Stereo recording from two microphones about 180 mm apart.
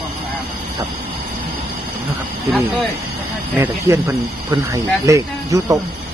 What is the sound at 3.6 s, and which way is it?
Speech, 15° right (ahead or behind).